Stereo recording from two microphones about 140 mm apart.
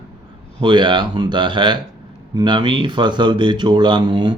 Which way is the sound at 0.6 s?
35° right (ahead or behind).